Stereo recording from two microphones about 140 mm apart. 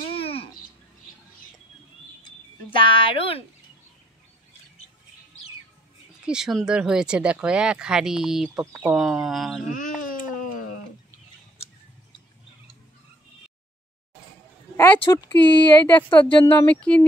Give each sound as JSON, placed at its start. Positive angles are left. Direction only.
{"t": 0.1, "sound": "a sound", "side_deg": 40}
{"t": 3.1, "sound": "speech", "side_deg": 40}
{"t": 6.2, "sound": "speech", "side_deg": -5}
{"t": 9.7, "sound": "baby cry", "side_deg": 70}
{"t": 14.8, "sound": "speech", "side_deg": 20}